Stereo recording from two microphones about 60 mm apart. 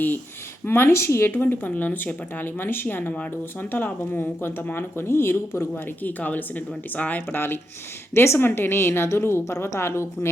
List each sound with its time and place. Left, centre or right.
0.6 s a woman's voice: left
1.3 s speech: left
5.7 s speech: left
9.4 s a woman's voice: left